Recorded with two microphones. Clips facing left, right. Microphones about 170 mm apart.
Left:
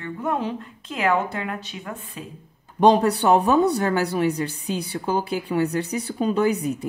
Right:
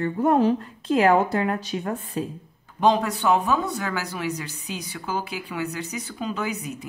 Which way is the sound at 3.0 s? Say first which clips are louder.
Left 4 dB; 35° left (ahead or behind).